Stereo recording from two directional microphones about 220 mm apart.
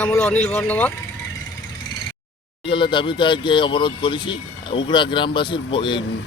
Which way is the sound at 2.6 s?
20° left (ahead or behind).